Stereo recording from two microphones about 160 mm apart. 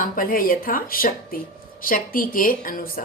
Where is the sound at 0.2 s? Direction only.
60° left (ahead or behind).